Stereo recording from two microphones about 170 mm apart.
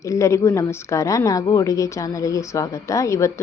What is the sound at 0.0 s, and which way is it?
A woman's voice, 20° left (ahead or behind).